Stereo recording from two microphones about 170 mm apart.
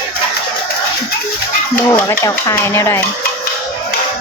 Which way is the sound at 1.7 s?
15° left (ahead or behind).